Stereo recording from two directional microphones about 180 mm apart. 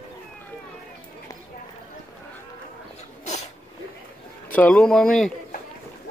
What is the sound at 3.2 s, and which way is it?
Sneeze, 40° left (ahead or behind).